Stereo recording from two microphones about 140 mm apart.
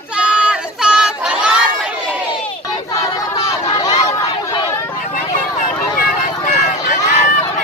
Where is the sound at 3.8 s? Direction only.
25° left (ahead or behind).